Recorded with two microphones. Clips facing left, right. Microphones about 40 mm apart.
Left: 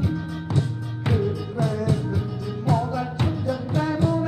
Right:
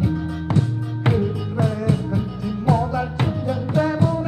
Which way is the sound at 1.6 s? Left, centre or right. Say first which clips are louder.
Right 2 dB; right.